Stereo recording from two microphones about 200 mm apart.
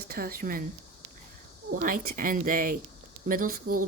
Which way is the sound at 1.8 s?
45° right (ahead or behind).